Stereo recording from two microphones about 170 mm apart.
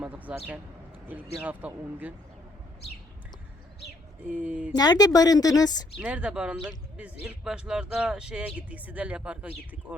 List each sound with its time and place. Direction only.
0.0 s speech: 10° right (ahead or behind)
4.3 s speech: 5° right (ahead or behind)
4.7 s a woman's voice: 25° left (ahead or behind)
6.0 s speech: 5° right (ahead or behind)